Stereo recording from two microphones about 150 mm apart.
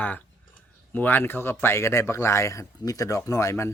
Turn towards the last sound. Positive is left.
turn(degrees=20)  # may be behind; listen again after turning